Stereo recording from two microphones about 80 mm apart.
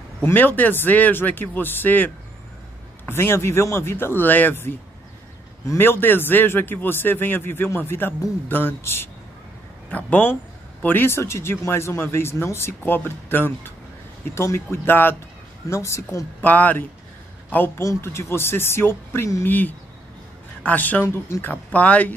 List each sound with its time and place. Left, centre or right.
0.2 s a man's voice: left
5.8 s a man's voice: left
14.3 s speech: left
16.3 s a man's voice: left
17.7 s speech: left
19.4 s a man's voice: left